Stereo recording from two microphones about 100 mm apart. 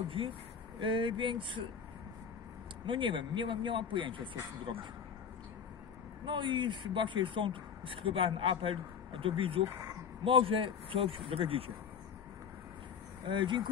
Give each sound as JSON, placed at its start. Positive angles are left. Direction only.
{"t": 0.1, "sound": "speech", "side_deg": -60}
{"t": 2.9, "sound": "speech", "side_deg": -55}
{"t": 6.2, "sound": "speech", "side_deg": -50}
{"t": 13.3, "sound": "speech", "side_deg": -50}